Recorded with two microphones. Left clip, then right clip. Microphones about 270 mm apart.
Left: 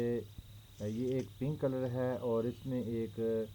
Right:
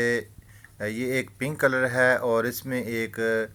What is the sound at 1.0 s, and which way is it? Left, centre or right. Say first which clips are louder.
Speech: right 9 dB; right.